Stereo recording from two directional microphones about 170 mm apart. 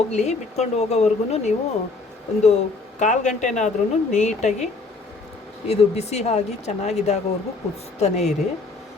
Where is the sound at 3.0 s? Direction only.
45° left (ahead or behind).